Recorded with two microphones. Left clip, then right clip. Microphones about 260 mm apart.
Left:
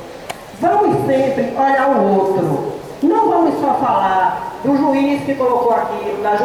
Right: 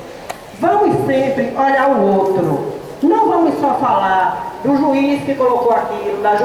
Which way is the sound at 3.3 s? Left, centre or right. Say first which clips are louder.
Even; centre.